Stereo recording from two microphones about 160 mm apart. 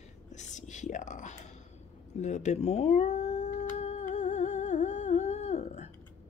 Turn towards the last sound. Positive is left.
turn(degrees=45)  # may be behind; listen again after turning